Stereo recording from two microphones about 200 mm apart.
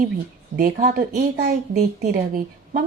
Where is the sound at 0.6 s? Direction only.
45° right (ahead or behind).